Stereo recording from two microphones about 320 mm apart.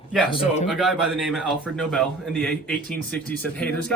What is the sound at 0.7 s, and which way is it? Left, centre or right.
A man's voice, centre.